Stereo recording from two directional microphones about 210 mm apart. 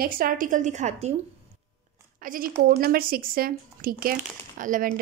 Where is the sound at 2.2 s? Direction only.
40° right (ahead or behind).